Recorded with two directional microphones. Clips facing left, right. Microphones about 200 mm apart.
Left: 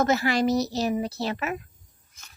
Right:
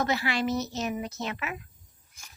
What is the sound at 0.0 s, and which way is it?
A woman's voice, 45° left (ahead or behind).